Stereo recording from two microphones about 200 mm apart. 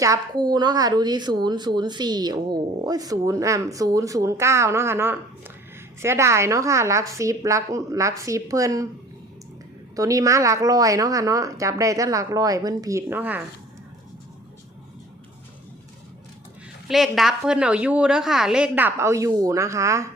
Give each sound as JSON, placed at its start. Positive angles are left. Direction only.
{"t": 0.0, "sound": "a woman's voice", "side_deg": -20}
{"t": 9.9, "sound": "a woman's voice", "side_deg": -15}
{"t": 16.9, "sound": "a woman's voice", "side_deg": 0}